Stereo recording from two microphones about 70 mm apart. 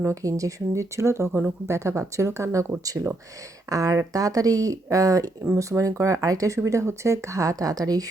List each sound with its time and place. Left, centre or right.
0.1 s speech: right
1.3 s speech: right
1.6 s speech: right